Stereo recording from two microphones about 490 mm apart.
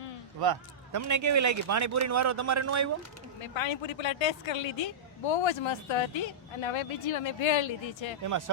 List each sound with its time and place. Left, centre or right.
0.9 s speech: right
3.4 s speech: left
8.2 s speech: right